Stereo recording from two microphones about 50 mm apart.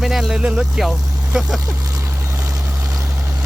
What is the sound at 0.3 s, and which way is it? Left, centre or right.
Speech, centre.